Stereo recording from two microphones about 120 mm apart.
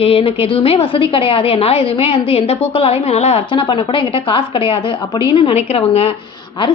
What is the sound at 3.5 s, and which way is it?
Speech, 40° left (ahead or behind).